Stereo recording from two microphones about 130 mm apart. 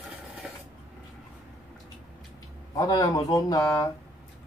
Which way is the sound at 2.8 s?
25° left (ahead or behind).